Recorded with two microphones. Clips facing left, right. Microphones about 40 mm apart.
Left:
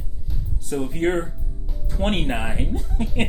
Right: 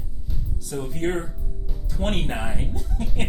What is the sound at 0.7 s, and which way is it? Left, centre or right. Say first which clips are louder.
Speech: left 5 dB; left.